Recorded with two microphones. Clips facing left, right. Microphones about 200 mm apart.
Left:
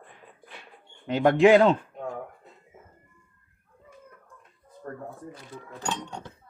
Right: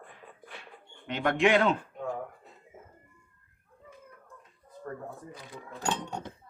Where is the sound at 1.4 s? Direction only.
35° left (ahead or behind).